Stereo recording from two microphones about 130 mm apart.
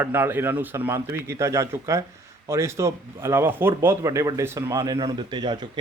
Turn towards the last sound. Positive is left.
turn(degrees=-35)  # may be behind; listen again after turning